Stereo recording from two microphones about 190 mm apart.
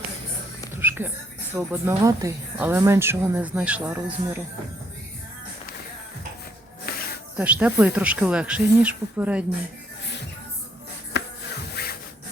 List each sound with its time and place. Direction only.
0.8 s music: 10° right (ahead or behind)
1.5 s speech: 10° right (ahead or behind)
6.9 s snake: 55° left (ahead or behind)
7.3 s speech: 5° right (ahead or behind)
11.7 s rub: 55° left (ahead or behind)